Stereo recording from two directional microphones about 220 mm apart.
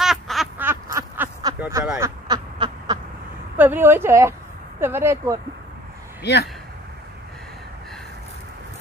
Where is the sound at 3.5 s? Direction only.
10° right (ahead or behind).